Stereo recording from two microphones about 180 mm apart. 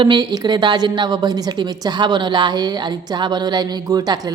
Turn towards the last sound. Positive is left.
turn(degrees=-20)  # may be behind; listen again after turning